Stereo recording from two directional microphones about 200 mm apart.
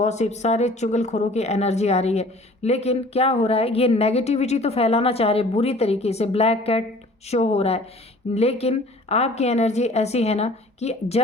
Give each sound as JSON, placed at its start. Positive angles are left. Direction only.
{"t": 0.0, "sound": "speech", "side_deg": 35}